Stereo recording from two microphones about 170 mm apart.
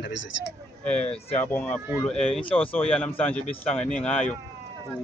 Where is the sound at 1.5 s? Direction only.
10° left (ahead or behind).